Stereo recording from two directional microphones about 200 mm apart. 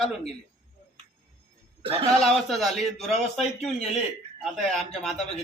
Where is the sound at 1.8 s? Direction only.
25° right (ahead or behind).